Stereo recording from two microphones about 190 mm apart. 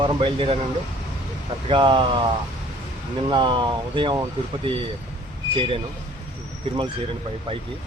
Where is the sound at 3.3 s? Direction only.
25° right (ahead or behind).